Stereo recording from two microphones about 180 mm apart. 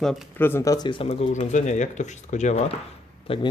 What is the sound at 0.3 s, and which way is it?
Speech, 10° left (ahead or behind).